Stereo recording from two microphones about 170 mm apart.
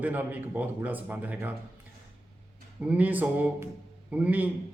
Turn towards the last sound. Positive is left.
turn(degrees=-10)  # may be behind; listen again after turning